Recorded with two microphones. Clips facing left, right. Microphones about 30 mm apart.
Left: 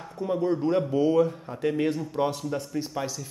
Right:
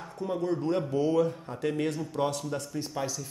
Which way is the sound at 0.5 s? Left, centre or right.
Centre.